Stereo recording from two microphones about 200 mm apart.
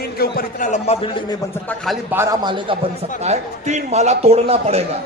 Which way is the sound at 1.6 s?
Centre (ahead or behind).